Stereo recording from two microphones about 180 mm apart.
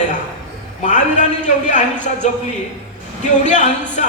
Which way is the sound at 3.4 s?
40° left (ahead or behind).